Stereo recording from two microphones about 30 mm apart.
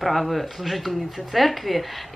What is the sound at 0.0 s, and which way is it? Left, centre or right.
Speech, centre.